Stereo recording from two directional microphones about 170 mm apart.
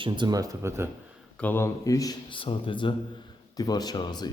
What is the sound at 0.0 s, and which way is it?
Speech, 25° right (ahead or behind).